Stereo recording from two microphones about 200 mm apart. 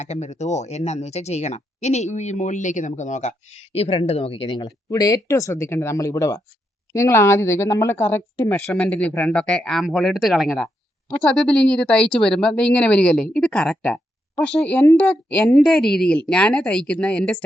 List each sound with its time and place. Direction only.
0.0 s speech: 35° left (ahead or behind); by 17.4 s 5° left (ahead or behind)